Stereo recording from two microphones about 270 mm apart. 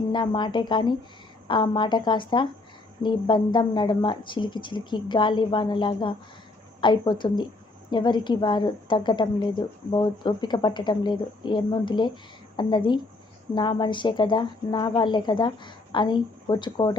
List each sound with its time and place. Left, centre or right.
0.1 s a woman's voice: centre